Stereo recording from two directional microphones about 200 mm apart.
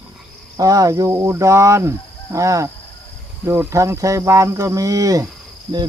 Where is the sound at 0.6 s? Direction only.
20° right (ahead or behind).